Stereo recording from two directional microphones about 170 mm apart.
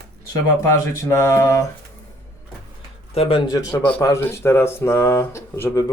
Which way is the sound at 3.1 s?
30° left (ahead or behind).